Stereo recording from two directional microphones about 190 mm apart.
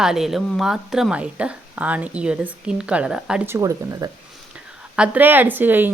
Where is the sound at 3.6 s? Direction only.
20° right (ahead or behind).